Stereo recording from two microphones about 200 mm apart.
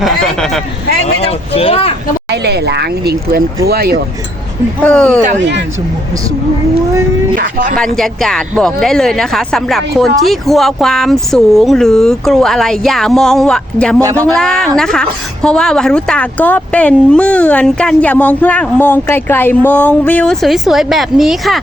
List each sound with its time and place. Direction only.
0.0 s speech: centre (ahead or behind)
1.0 s speech: 30° left (ahead or behind)
2.3 s a sound: 55° right (ahead or behind)
3.7 s speech: 50° right (ahead or behind)
4.8 s speech: 5° left (ahead or behind)
5.4 s speech: 60° right (ahead or behind)
7.3 s speech: 40° right (ahead or behind)
7.8 s a woman's voice: centre (ahead or behind)
14.0 s speech: 15° right (ahead or behind)
14.3 s a woman's voice: 5° left (ahead or behind)